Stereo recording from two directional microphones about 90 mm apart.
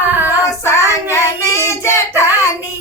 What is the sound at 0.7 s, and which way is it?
Child singing, 35° left (ahead or behind).